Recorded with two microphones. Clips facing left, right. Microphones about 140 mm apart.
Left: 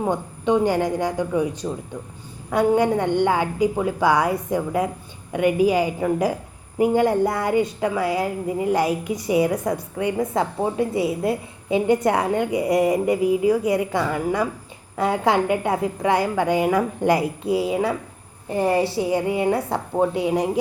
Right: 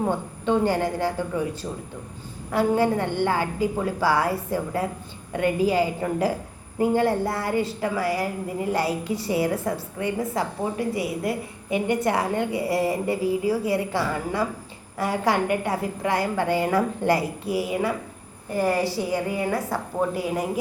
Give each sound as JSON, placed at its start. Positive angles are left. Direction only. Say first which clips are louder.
{"t": 0.1, "sound": "a woman's voice", "louder": "left 3 dB", "side_deg": 15}
{"t": 2.5, "sound": "a woman's voice", "louder": "left 3 dB", "side_deg": 20}